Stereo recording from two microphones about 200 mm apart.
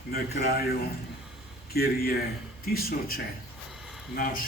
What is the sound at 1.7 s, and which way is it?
Speech, 50° left (ahead or behind).